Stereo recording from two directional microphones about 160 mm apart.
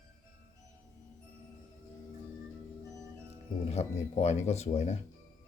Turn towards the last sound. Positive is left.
turn(degrees=45)  # may be behind; listen again after turning